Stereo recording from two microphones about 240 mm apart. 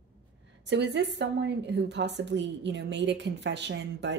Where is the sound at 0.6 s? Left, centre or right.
Right.